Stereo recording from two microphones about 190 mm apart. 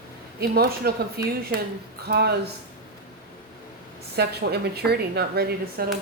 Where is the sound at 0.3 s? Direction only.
55° right (ahead or behind).